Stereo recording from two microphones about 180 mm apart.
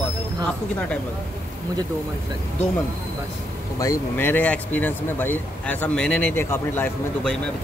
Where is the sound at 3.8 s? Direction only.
15° left (ahead or behind).